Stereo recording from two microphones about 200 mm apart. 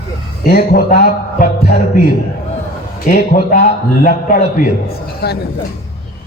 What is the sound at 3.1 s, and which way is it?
A man's voice, 50° left (ahead or behind).